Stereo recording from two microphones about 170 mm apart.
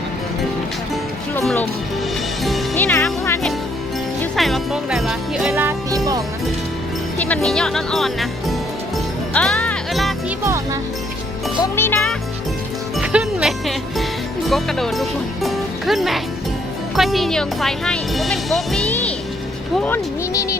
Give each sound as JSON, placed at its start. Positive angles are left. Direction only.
{"t": 2.7, "sound": "music", "side_deg": 10}
{"t": 4.4, "sound": "speech", "side_deg": 0}
{"t": 7.2, "sound": "speech", "side_deg": 5}
{"t": 9.3, "sound": "music", "side_deg": 5}
{"t": 10.4, "sound": "music", "side_deg": -15}
{"t": 11.6, "sound": "music", "side_deg": 15}
{"t": 13.0, "sound": "music", "side_deg": -5}
{"t": 14.5, "sound": "speech", "side_deg": 0}